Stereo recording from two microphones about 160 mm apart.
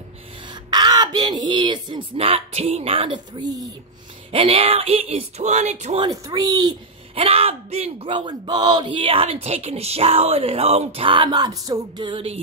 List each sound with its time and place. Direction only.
0.5 s speech: 25° right (ahead or behind)
4.3 s speech: 35° right (ahead or behind)
5.9 s speech: 25° right (ahead or behind)
7.2 s speech: 35° right (ahead or behind)